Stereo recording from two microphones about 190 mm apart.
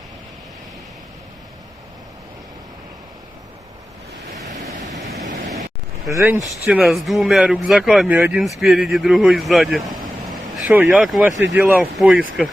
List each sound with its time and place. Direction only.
4.8 s vehicle: 40° right (ahead or behind)
6.1 s speech: 15° right (ahead or behind)